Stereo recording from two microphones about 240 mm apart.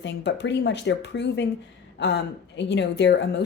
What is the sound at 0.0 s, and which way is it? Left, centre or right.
Speech, left.